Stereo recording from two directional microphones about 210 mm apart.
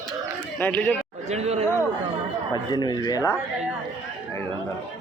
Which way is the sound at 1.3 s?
30° right (ahead or behind).